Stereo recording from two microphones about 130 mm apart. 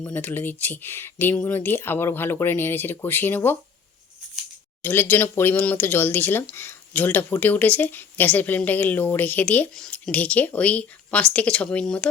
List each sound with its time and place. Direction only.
0.0 s speech: 15° left (ahead or behind)
4.8 s speech: 15° left (ahead or behind)